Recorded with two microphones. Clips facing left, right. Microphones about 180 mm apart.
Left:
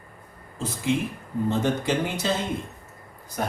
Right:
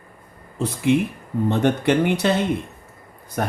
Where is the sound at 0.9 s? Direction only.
65° right (ahead or behind).